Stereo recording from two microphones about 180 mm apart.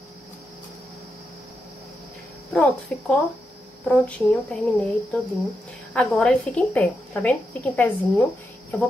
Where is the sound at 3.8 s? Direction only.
5° left (ahead or behind).